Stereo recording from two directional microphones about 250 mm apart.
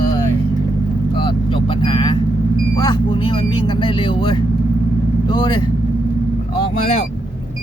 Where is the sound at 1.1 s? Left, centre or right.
Centre.